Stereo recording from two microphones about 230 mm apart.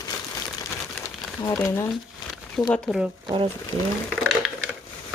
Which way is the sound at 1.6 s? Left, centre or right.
Centre.